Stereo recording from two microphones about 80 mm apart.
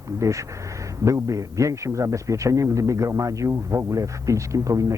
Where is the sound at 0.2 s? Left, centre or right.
Right.